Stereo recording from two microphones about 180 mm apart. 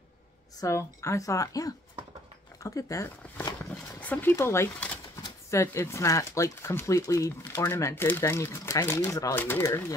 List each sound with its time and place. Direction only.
0.6 s speech: 15° left (ahead or behind)
3.7 s a sound: 10° left (ahead or behind)
5.5 s speech: 15° left (ahead or behind)